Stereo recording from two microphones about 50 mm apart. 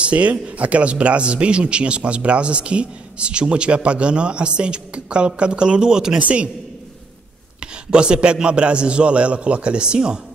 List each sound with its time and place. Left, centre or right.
0.0 s a man's voice: right
6.1 s a man's voice: right
7.6 s a man's voice: centre